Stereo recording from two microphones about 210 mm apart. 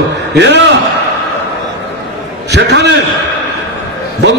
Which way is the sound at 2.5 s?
55° right (ahead or behind).